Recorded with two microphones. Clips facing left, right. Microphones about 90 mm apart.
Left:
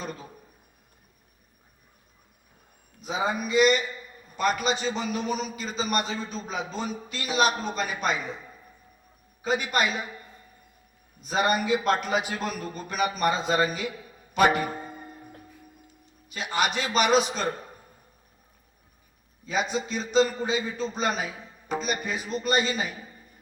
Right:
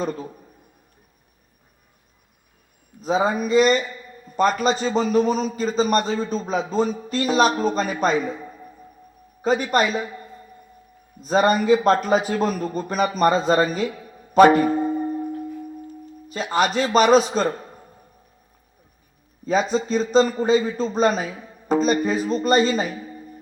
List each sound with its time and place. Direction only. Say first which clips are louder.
3.2 s a man's voice: right 3 dB; 35° right (ahead or behind)
9.4 s a man's voice: right 6 dB; 35° right (ahead or behind)
11.2 s a man's voice: right 6 dB; 40° right (ahead or behind)
14.3 s music: right 9 dB; 40° right (ahead or behind)
16.3 s a man's voice: right 6 dB; 40° right (ahead or behind)
19.5 s a man's voice: right 7 dB; 35° right (ahead or behind)